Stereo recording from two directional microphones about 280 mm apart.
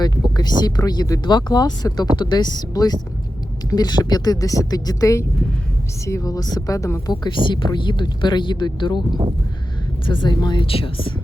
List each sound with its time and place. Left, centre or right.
0.0 s speech: centre